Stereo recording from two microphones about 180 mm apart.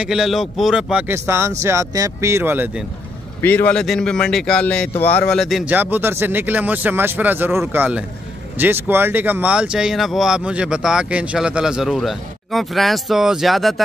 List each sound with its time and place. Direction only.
0.0 s speech: 5° right (ahead or behind)
3.4 s speech: 10° left (ahead or behind)